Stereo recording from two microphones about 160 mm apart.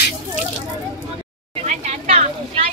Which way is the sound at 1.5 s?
45° right (ahead or behind).